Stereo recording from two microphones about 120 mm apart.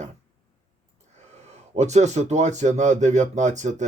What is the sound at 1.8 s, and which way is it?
Speech, 70° right (ahead or behind).